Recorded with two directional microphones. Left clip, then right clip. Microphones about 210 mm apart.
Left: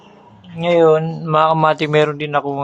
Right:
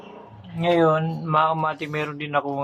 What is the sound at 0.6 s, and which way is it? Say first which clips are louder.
A man's voice: left 7 dB; 25° left (ahead or behind).